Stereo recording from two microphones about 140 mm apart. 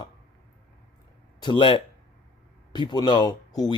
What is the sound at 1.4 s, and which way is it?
A man's voice, 35° left (ahead or behind).